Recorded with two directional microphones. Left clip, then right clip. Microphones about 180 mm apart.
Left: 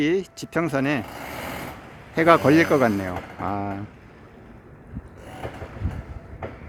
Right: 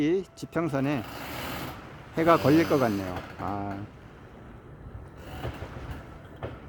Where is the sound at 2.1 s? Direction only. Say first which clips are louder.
Left 5 dB; 10° left (ahead or behind).